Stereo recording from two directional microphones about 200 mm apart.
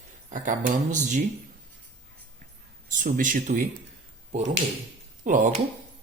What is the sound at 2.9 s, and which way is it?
Speech, 40° right (ahead or behind).